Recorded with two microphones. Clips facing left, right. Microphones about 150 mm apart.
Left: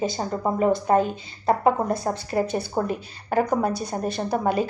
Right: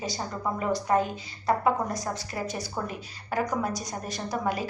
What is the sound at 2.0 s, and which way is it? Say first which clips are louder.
Speech: left 8 dB; 40° left (ahead or behind).